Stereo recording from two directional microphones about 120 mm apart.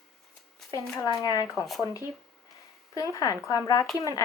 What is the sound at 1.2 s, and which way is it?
Speech, 30° left (ahead or behind).